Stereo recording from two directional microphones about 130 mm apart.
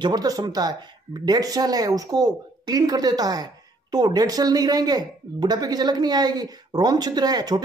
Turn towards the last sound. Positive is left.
turn(degrees=-30)  # may be behind; listen again after turning